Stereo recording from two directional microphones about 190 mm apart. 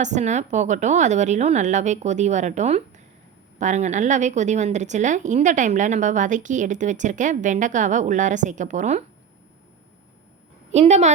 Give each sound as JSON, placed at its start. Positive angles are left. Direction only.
{"t": 0.0, "sound": "a woman's voice", "side_deg": -40}
{"t": 10.7, "sound": "a woman's voice", "side_deg": -35}